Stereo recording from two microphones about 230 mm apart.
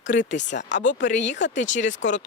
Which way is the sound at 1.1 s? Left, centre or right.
Left.